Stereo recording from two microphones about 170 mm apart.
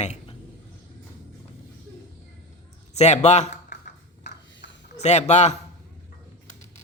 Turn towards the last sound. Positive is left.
turn(degrees=40)  # may be behind; listen again after turning